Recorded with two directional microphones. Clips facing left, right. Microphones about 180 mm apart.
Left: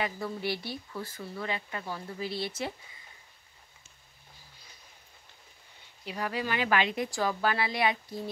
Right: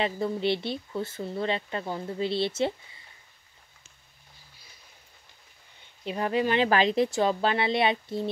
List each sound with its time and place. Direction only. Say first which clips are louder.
0.0 s speech: right 6 dB; 25° right (ahead or behind)
6.0 s speech: right 7 dB; 25° right (ahead or behind)
7.1 s speech: right 4 dB; 25° right (ahead or behind)